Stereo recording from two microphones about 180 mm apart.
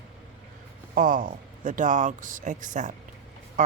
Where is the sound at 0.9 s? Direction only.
50° right (ahead or behind).